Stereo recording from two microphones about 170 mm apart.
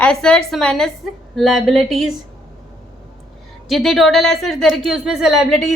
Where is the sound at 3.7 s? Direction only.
Centre (ahead or behind).